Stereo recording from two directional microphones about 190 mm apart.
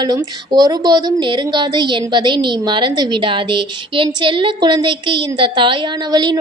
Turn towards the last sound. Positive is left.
turn(degrees=-25)  # may be behind; listen again after turning